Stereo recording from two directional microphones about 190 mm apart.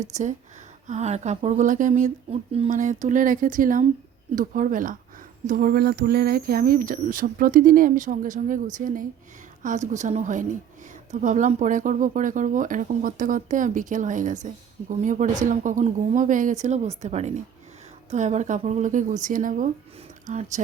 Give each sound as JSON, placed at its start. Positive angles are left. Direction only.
{"t": 0.1, "sound": "speech", "side_deg": -40}